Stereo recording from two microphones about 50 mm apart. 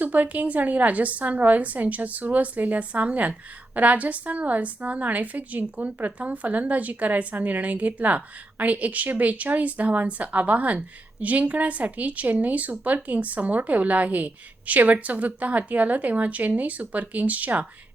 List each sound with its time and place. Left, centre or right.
0.0 s a woman's voice: right